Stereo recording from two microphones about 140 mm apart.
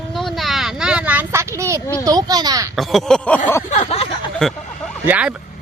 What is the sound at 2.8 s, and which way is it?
Speech, centre (ahead or behind).